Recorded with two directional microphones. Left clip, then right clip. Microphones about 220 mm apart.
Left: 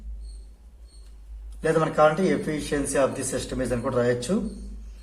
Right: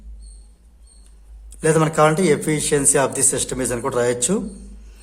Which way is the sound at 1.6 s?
45° right (ahead or behind).